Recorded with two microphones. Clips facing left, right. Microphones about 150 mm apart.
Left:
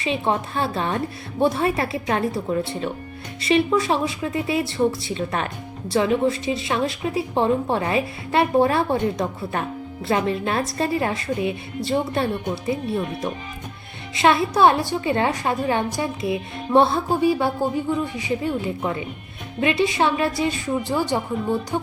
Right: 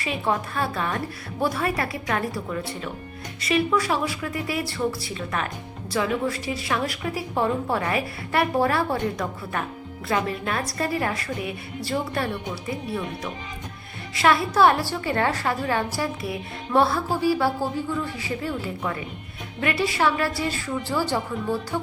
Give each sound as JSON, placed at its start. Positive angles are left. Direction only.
{"t": 0.0, "sound": "a woman's voice", "side_deg": 25}
{"t": 14.2, "sound": "a woman's voice", "side_deg": 20}